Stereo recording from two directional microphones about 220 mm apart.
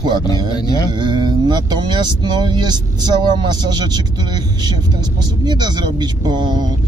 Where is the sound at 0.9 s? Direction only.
20° right (ahead or behind).